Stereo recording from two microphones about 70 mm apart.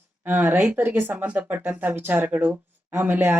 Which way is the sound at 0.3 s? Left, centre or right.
Right.